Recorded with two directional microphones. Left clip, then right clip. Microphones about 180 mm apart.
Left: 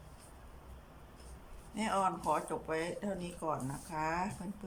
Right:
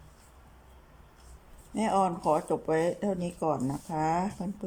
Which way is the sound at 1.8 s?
35° right (ahead or behind).